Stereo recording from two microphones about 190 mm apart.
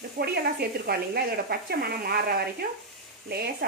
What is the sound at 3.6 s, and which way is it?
Speech, 55° right (ahead or behind).